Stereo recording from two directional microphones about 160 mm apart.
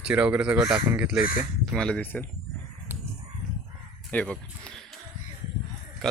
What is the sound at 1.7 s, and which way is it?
Speech, 5° left (ahead or behind).